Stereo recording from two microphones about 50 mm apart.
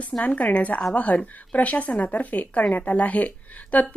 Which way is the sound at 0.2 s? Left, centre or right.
Left.